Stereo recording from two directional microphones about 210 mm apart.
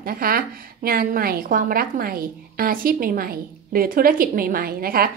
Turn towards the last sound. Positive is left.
turn(degrees=-45)  # may be behind; listen again after turning